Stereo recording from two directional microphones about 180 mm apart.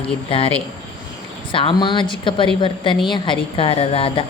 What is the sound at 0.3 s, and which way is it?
A woman's voice, 30° left (ahead or behind).